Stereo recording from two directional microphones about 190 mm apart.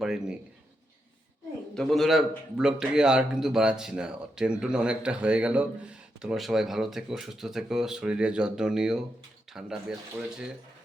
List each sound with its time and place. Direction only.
0.0 s a man's voice: centre (ahead or behind)
1.7 s a man's voice: centre (ahead or behind)